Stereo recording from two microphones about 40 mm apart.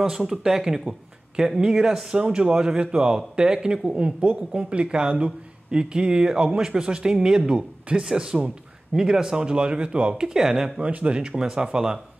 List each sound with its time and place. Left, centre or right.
0.3 s speech: centre
10.8 s speech: right
11.1 s speech: centre